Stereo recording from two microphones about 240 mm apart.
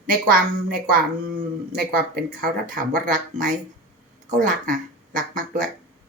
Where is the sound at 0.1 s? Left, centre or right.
Right.